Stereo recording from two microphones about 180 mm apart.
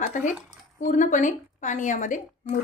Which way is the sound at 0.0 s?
45° left (ahead or behind).